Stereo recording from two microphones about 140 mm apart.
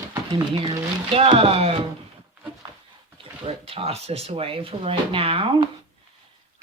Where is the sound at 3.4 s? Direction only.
45° right (ahead or behind).